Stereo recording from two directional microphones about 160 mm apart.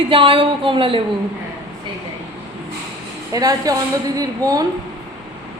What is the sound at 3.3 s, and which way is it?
Speech, 25° right (ahead or behind).